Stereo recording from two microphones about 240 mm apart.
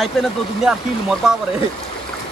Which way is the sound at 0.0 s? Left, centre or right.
Centre.